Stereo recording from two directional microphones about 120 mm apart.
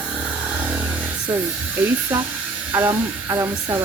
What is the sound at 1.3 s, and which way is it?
Speech, 15° right (ahead or behind).